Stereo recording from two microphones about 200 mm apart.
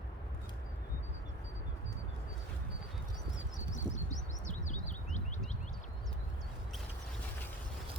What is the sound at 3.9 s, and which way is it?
Bird, 35° left (ahead or behind).